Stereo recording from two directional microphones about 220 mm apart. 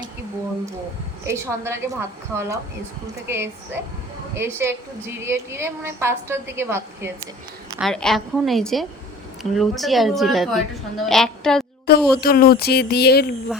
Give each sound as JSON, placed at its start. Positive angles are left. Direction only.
{"t": 1.2, "sound": "a woman's voice", "side_deg": -10}
{"t": 7.8, "sound": "a woman's voice", "side_deg": 0}
{"t": 11.9, "sound": "speech", "side_deg": 45}